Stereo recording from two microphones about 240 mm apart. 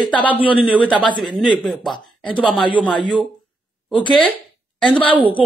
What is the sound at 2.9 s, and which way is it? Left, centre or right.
Speech, centre.